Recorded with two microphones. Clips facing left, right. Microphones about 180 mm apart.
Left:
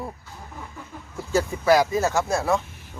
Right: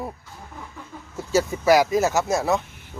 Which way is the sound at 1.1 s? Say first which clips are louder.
Right 2 dB; 5° right (ahead or behind).